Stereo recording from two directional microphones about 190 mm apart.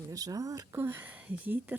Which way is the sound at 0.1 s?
20° right (ahead or behind).